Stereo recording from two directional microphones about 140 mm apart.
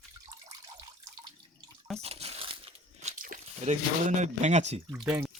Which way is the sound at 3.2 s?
65° right (ahead or behind).